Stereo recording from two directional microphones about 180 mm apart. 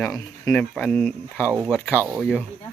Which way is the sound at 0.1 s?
5° left (ahead or behind).